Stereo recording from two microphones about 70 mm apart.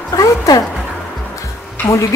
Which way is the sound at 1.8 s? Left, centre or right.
Left.